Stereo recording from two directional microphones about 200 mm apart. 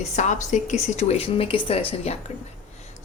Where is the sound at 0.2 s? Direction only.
35° left (ahead or behind).